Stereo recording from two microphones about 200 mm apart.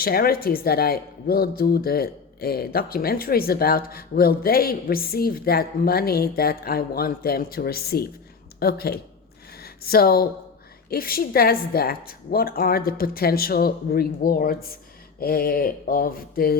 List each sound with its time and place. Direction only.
0.0 s speech: 50° left (ahead or behind)